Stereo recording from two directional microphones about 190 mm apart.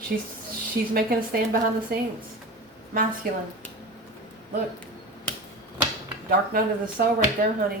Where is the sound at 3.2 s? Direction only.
50° right (ahead or behind).